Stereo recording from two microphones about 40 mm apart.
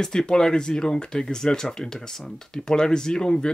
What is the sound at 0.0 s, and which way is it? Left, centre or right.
Speech, centre.